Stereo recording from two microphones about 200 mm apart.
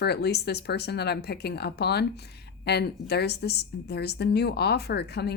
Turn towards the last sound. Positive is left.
turn(degrees=55)  # may be behind; listen again after turning